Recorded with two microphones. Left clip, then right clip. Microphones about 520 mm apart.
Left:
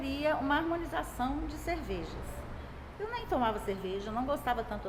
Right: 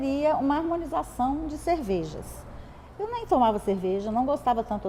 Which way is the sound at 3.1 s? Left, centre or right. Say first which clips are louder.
Right 9 dB; right.